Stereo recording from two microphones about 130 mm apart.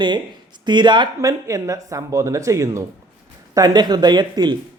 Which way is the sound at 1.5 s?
25° right (ahead or behind).